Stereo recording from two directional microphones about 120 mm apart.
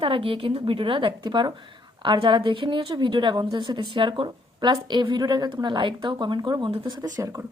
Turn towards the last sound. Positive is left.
turn(degrees=-25)  # may be behind; listen again after turning